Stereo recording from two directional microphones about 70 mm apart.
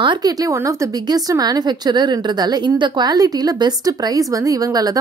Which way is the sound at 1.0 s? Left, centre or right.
Right.